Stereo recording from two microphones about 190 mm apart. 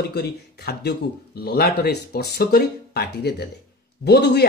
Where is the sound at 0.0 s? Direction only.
60° left (ahead or behind).